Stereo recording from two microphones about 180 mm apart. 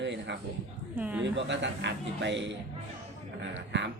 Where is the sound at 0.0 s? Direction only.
75° right (ahead or behind).